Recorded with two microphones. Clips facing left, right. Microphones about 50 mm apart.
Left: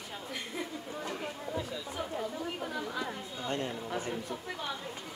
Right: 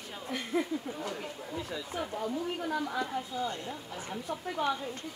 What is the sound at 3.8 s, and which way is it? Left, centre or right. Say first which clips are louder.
Speech: left 6 dB; left.